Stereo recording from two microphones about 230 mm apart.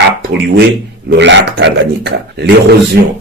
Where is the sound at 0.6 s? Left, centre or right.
Right.